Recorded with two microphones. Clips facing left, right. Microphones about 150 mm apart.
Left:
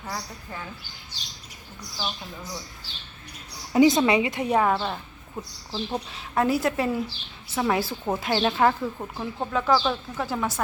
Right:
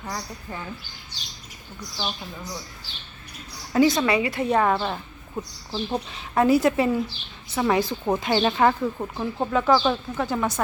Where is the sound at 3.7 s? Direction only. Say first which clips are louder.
Left 1 dB; 20° left (ahead or behind).